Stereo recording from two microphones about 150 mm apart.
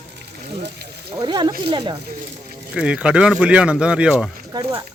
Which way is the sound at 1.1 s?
30° right (ahead or behind).